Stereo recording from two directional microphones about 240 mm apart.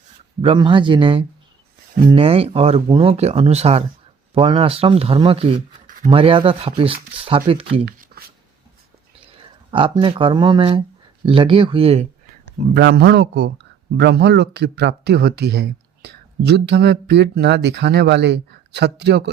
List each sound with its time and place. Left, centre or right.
0.4 s speech: centre
8.1 s a sound: right
9.7 s speech: right
12.7 s speech: right